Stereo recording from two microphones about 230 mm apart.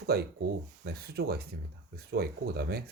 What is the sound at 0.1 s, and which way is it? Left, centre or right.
Speech, right.